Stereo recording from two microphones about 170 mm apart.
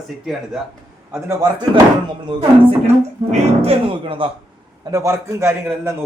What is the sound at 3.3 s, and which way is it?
Speech, 35° right (ahead or behind).